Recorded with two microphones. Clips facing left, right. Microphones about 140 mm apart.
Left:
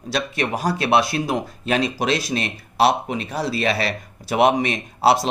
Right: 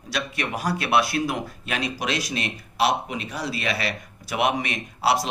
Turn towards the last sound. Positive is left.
turn(degrees=30)  # may be behind; listen again after turning